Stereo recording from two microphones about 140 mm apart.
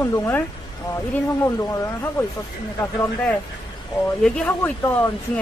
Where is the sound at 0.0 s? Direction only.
20° left (ahead or behind).